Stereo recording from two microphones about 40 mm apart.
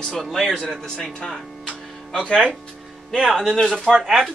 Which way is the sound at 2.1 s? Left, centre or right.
Centre.